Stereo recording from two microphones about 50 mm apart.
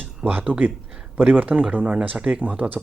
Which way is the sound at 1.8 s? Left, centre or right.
Right.